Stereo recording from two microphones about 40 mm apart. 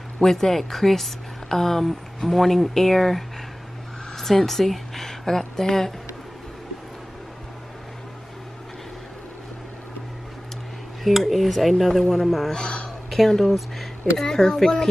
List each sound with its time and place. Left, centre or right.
0.2 s a woman's voice: centre
11.1 s speech: centre
12.5 s a sound: left
13.3 s speech: centre
14.2 s speech: centre